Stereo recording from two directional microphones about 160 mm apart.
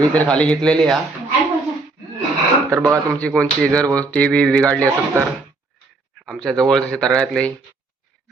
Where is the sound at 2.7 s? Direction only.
20° right (ahead or behind).